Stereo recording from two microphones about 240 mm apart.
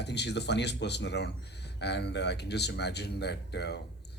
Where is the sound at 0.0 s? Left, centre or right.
Left.